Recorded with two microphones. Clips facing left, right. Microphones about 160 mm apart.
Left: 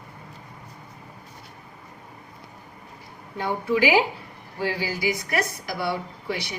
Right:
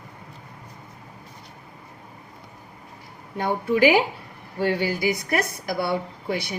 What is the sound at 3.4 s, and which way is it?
Speech, 55° right (ahead or behind).